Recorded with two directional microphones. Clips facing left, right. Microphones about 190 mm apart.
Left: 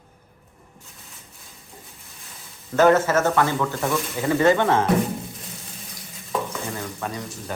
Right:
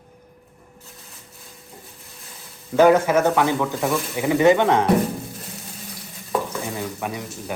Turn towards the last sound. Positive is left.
turn(degrees=-10)  # may be behind; listen again after turning